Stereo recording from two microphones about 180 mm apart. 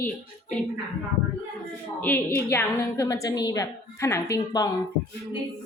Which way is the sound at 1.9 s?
10° left (ahead or behind).